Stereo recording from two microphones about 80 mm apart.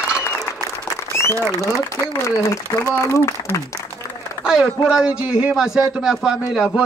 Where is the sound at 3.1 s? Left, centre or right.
Left.